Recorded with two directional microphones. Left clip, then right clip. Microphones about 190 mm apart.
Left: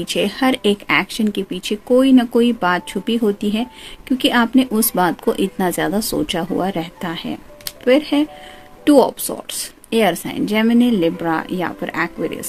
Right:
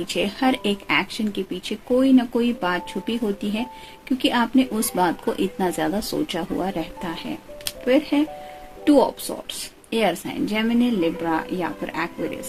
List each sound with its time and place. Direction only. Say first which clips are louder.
0.0 s speech: left 4 dB; 50° left (ahead or behind)